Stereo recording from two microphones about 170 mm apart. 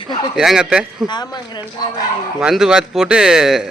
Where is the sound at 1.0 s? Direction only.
25° left (ahead or behind).